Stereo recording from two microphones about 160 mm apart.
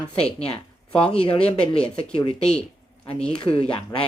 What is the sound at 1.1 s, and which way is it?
Speech, 35° left (ahead or behind).